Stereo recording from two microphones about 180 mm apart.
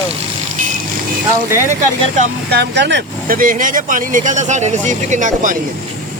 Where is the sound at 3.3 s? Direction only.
50° right (ahead or behind).